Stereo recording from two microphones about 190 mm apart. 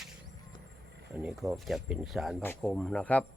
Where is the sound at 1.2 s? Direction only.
Centre (ahead or behind).